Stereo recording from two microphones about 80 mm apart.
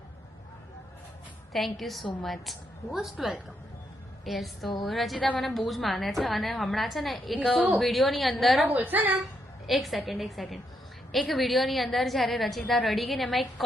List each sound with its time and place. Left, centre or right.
1.5 s a woman's voice: centre
8.6 s speech: right
9.6 s a woman's voice: centre